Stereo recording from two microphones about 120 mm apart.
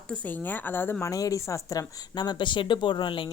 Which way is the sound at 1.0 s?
30° left (ahead or behind).